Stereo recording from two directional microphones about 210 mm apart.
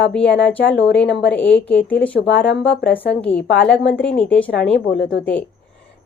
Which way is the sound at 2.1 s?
55° left (ahead or behind).